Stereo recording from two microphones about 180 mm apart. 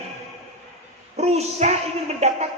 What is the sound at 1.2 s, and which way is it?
A woman's voice, 35° right (ahead or behind).